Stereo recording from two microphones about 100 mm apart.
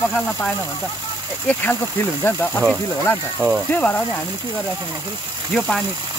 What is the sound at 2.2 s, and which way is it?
Speech, 20° left (ahead or behind).